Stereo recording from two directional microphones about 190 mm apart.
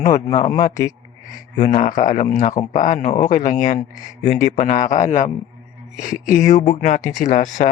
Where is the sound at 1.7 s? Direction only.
45° left (ahead or behind).